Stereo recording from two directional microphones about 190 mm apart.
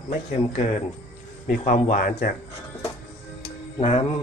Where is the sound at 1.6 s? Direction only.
40° left (ahead or behind).